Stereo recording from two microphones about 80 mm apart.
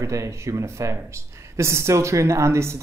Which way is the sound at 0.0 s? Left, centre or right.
Right.